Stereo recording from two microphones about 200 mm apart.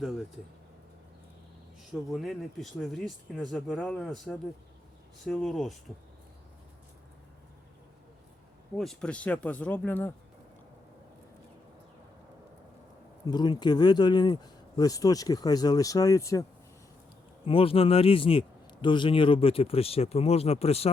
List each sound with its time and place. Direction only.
1.9 s speech: centre (ahead or behind)
8.8 s speech: 5° left (ahead or behind)
13.2 s a man's voice: 20° left (ahead or behind)
17.4 s a man's voice: 25° left (ahead or behind)